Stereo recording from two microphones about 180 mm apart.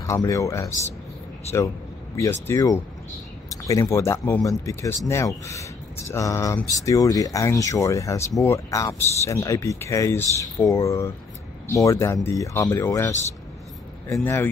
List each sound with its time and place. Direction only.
0.0 s speech: 15° left (ahead or behind)
2.4 s speech: 15° left (ahead or behind)